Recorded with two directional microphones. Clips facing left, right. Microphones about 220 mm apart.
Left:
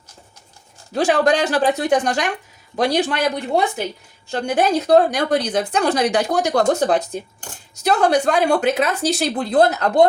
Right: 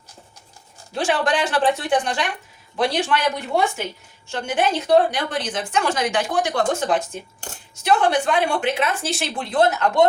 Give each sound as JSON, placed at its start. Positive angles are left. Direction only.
{"t": 0.9, "sound": "speech", "side_deg": 40}